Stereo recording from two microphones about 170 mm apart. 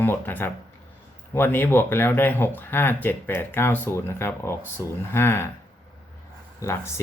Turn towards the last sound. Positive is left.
turn(degrees=15)  # may be behind; listen again after turning